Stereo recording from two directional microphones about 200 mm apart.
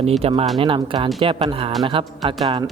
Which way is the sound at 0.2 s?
30° right (ahead or behind).